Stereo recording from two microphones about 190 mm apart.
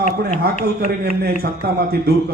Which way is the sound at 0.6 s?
55° right (ahead or behind).